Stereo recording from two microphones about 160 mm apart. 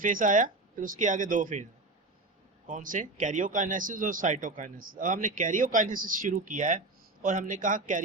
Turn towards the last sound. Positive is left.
turn(degrees=-55)  # may be behind; listen again after turning